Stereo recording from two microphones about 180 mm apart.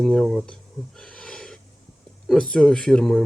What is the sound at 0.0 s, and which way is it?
Speech, centre (ahead or behind).